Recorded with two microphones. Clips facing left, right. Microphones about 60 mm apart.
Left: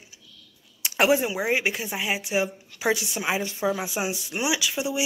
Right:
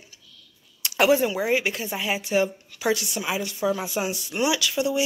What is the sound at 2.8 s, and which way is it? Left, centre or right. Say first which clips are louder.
Speech: even; left.